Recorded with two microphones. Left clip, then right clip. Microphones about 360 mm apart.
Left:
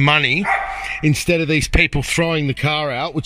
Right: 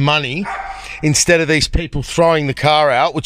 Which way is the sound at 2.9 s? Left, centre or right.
Right.